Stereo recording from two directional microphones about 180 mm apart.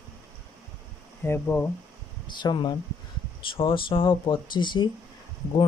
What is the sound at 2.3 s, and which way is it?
Speech, 25° left (ahead or behind).